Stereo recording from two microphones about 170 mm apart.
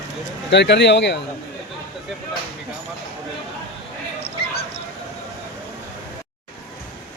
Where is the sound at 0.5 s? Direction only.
90° left.